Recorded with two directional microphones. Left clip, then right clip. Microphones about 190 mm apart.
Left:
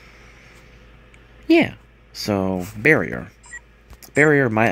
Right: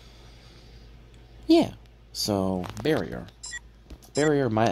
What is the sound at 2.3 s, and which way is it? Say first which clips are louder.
Speech: left 5 dB; 15° left (ahead or behind).